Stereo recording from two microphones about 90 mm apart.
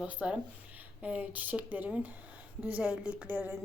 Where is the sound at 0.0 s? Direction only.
15° right (ahead or behind).